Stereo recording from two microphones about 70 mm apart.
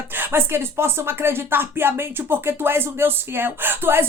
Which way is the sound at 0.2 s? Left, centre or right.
Right.